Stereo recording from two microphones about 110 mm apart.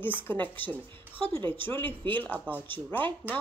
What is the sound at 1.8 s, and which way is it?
Speech, 50° right (ahead or behind).